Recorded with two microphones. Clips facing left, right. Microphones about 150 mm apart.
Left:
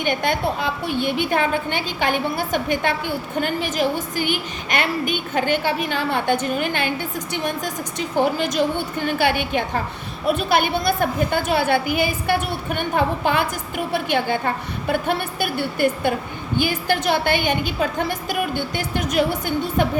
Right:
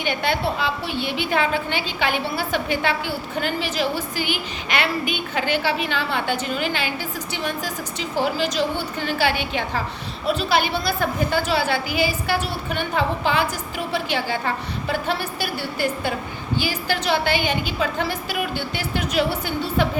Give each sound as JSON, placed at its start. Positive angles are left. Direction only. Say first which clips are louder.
{"t": 0.0, "sound": "a woman's voice", "louder": "left 2 dB", "side_deg": 50}